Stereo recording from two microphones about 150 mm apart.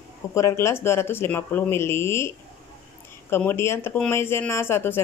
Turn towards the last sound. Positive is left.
turn(degrees=15)  # may be behind; listen again after turning